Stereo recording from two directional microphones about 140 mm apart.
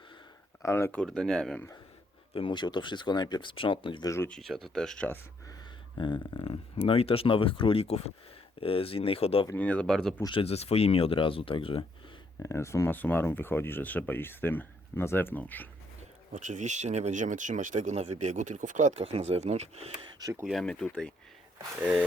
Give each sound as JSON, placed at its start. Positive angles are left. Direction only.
{"t": 0.6, "sound": "speech", "side_deg": 15}
{"t": 2.3, "sound": "speech", "side_deg": 35}
{"t": 4.3, "sound": "speech", "side_deg": 0}
{"t": 6.0, "sound": "speech", "side_deg": 35}
{"t": 9.6, "sound": "speech", "side_deg": 10}
{"t": 10.2, "sound": "speech", "side_deg": 40}
{"t": 12.4, "sound": "speech", "side_deg": 20}
{"t": 16.3, "sound": "speech", "side_deg": -60}
{"t": 20.1, "sound": "a sound", "side_deg": -30}
{"t": 20.4, "sound": "speech", "side_deg": 0}
{"t": 21.8, "sound": "speech", "side_deg": -10}